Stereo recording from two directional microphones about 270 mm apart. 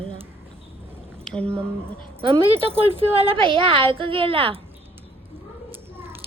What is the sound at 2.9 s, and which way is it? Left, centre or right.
A woman's voice, centre.